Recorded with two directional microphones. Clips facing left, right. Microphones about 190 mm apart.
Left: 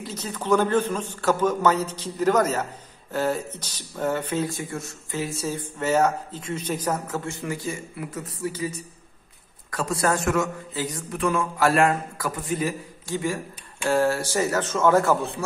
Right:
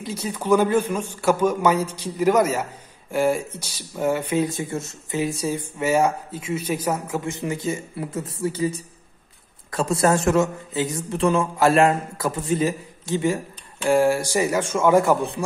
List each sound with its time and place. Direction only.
0.0 s a man's voice: 10° right (ahead or behind)